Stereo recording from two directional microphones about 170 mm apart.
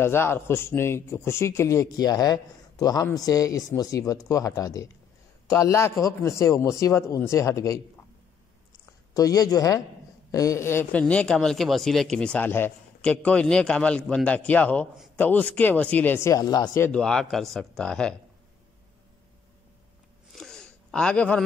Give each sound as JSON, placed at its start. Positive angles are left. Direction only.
{"t": 0.0, "sound": "speech", "side_deg": 15}
{"t": 9.1, "sound": "speech", "side_deg": 20}
{"t": 16.9, "sound": "speech", "side_deg": 5}
{"t": 20.3, "sound": "a sound", "side_deg": 5}